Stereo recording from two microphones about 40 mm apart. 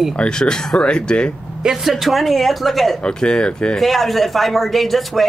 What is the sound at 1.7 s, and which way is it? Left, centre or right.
Speech, centre.